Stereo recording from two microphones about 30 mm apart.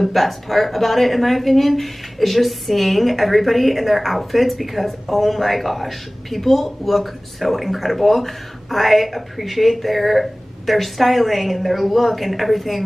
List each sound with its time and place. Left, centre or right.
0.0 s speech: centre